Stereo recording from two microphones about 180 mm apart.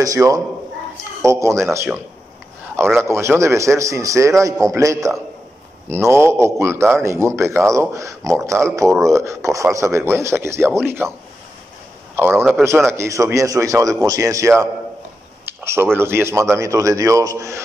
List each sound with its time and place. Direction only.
0.0 s a man's voice: 20° right (ahead or behind)
12.2 s a man's voice: 15° right (ahead or behind)